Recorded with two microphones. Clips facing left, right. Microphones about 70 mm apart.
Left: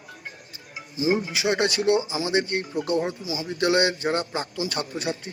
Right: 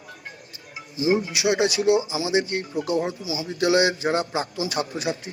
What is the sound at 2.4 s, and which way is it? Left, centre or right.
Speech, left.